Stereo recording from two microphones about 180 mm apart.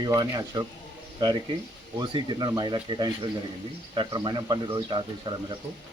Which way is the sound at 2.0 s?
25° right (ahead or behind).